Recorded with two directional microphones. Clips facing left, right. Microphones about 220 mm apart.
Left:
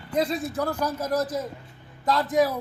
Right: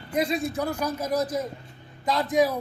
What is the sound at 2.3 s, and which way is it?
Speech, 15° right (ahead or behind).